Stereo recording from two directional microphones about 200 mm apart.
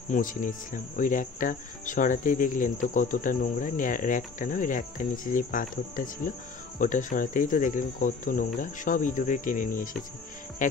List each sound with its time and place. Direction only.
0.1 s speech: 40° left (ahead or behind)